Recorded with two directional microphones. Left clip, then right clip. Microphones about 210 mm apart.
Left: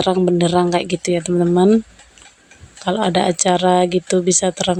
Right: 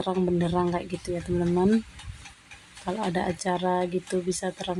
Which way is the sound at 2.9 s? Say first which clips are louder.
Left 12 dB; 35° left (ahead or behind).